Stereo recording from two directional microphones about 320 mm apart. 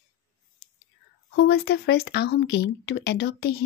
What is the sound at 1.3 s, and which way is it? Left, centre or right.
Speech, left.